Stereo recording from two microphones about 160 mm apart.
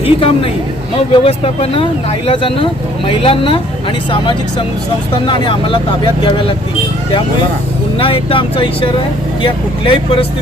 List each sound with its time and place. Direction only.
0.0 s speech: 35° left (ahead or behind)
7.9 s speech: 35° left (ahead or behind)